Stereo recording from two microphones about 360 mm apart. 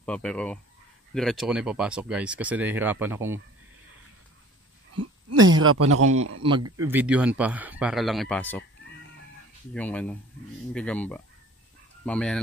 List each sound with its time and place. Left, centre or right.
0.0 s speech: centre
4.9 s a man's voice: right
6.8 s speech: centre
9.8 s speech: centre